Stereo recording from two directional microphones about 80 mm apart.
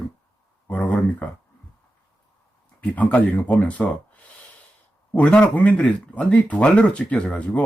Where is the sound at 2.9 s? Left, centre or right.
Left.